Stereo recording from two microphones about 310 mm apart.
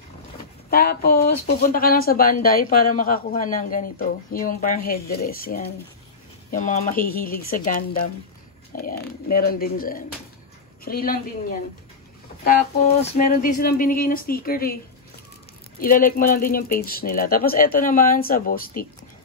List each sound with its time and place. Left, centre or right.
0.7 s speech: left
15.8 s speech: left